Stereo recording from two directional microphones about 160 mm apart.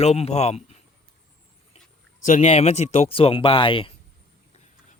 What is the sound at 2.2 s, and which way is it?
A man's voice, 50° left (ahead or behind).